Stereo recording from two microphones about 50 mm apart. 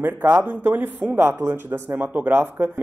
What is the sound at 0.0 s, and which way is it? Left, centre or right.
Speech, right.